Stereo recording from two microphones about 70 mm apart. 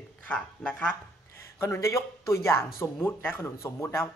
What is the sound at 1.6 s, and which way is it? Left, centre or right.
Speech, left.